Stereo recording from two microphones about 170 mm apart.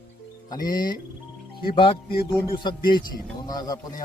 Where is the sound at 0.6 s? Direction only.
55° left (ahead or behind).